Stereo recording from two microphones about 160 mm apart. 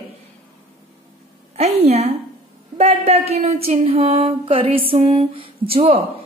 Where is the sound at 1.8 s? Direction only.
40° right (ahead or behind).